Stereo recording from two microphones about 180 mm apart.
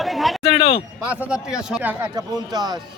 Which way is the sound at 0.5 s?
30° left (ahead or behind).